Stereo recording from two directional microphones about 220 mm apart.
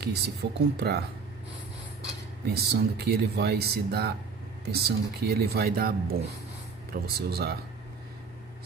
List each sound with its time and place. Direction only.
0.0 s speech: 50° right (ahead or behind)
2.4 s speech: 45° right (ahead or behind)